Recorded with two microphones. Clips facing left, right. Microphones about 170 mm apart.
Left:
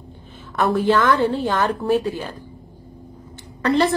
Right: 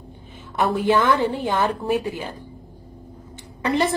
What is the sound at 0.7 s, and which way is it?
Speech, 15° right (ahead or behind).